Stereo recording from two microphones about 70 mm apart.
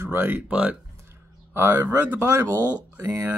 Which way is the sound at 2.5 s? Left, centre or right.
Left.